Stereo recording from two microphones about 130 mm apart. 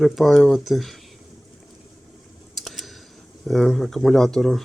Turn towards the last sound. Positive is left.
turn(degrees=0)  # may be behind; listen again after turning